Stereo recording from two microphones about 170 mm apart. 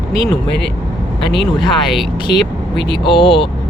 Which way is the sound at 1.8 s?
Centre (ahead or behind).